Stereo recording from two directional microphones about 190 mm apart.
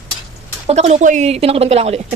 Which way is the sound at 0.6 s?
35° right (ahead or behind).